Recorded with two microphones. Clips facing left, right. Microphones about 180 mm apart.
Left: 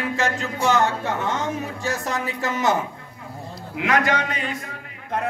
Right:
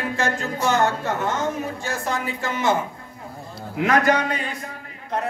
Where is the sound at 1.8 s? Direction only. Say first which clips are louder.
Left 2 dB; 40° left (ahead or behind).